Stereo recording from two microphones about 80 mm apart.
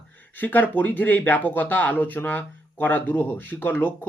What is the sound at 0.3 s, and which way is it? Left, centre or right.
Speech, left.